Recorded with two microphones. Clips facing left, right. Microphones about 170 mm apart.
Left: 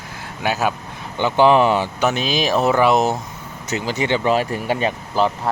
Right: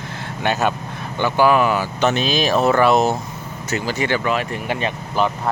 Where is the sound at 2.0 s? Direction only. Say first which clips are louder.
Right 3 dB; 15° left (ahead or behind).